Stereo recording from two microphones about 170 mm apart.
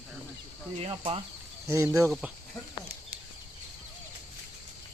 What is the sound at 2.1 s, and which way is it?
Insect, 5° right (ahead or behind).